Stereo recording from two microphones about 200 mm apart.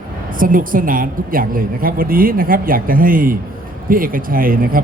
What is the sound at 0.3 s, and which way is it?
A man's voice, 45° right (ahead or behind).